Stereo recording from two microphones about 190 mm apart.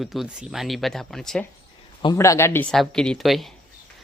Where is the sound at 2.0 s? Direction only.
15° left (ahead or behind); by 3.5 s centre (ahead or behind).